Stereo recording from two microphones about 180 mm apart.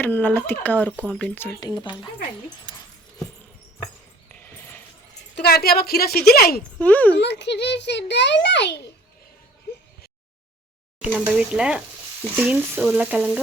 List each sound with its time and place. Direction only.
0.0 s speech: 10° left (ahead or behind); by 2.0 s 25° left (ahead or behind)
4.3 s a sound: 10° left (ahead or behind)
5.4 s a woman's voice: 60° left (ahead or behind)
6.7 s speech: 10° left (ahead or behind)
7.2 s a child's voice: 70° left (ahead or behind)
11.1 s stir: 5° right (ahead or behind)